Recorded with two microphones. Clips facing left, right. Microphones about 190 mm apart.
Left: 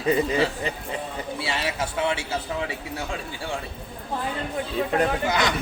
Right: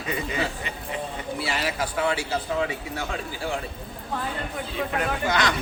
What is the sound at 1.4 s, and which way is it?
Speech, 25° left (ahead or behind).